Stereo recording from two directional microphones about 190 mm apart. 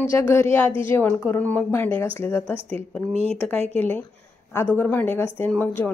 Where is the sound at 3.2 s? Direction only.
30° right (ahead or behind).